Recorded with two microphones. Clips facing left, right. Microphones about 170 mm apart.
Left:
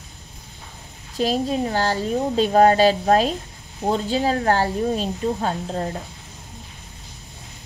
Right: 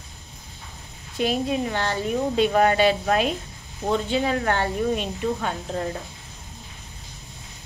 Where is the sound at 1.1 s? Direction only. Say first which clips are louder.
Left 2 dB; 35° left (ahead or behind).